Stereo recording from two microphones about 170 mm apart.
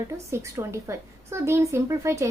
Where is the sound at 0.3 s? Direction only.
15° right (ahead or behind).